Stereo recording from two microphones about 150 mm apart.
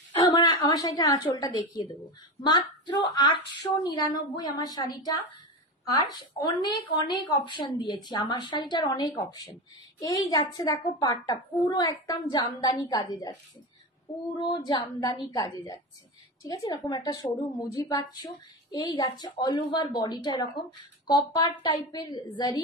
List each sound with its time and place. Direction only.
0.1 s a woman's voice: 35° left (ahead or behind)